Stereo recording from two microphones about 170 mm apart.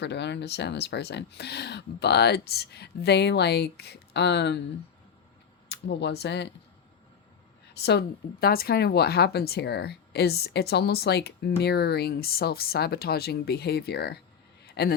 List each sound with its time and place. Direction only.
0.0 s speech: 90° left
5.6 s speech: 85° left
7.8 s speech: 75° left (ahead or behind)
14.6 s a sound: 70° left (ahead or behind)